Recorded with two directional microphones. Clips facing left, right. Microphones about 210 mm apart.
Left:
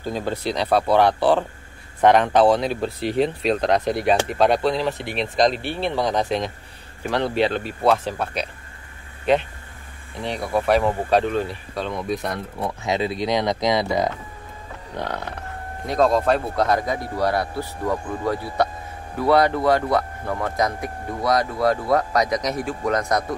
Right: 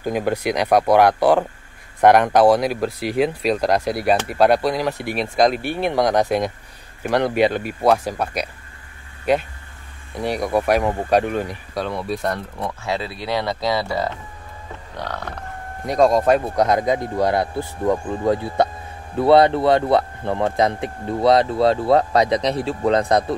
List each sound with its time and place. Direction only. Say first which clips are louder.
0.0 s speech: right 4 dB; 15° right (ahead or behind)
12.3 s speech: right 2 dB; 15° left (ahead or behind)
16.1 s speech: right 3 dB; 15° right (ahead or behind)